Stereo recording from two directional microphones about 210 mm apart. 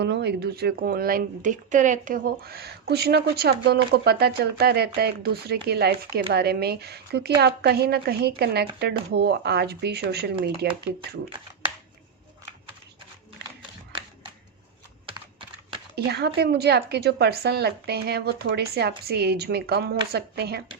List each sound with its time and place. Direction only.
0.0 s speech: 55° right (ahead or behind)
15.0 s computer keyboard: 25° right (ahead or behind)
16.0 s speech: 50° right (ahead or behind)